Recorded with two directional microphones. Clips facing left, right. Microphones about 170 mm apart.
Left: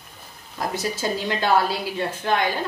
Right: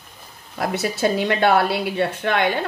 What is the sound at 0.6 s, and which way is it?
A woman's voice, 65° right (ahead or behind).